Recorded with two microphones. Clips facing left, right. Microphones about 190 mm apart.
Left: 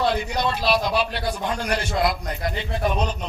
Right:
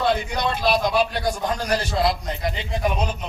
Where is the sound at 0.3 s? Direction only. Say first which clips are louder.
Even; 50° right (ahead or behind); by 2.5 s 25° right (ahead or behind).